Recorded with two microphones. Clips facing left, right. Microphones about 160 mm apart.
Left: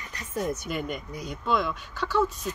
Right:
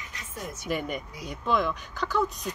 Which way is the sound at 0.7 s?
Centre (ahead or behind).